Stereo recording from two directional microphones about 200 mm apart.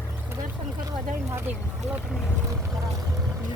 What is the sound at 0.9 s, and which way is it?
Speech, 15° right (ahead or behind).